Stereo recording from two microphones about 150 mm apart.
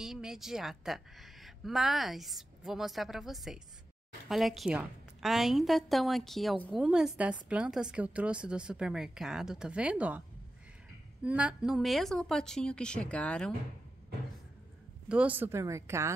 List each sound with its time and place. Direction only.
0.0 s a woman's voice: 5° right (ahead or behind)
11.2 s a woman's voice: 10° right (ahead or behind)
15.0 s a woman's voice: 10° right (ahead or behind)